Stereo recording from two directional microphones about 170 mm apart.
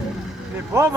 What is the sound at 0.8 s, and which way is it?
Speech, 15° right (ahead or behind).